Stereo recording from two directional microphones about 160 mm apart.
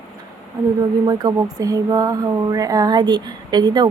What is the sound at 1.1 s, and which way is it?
Speech, 25° right (ahead or behind).